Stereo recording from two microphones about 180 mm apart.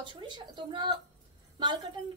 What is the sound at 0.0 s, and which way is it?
A woman's voice, 25° right (ahead or behind).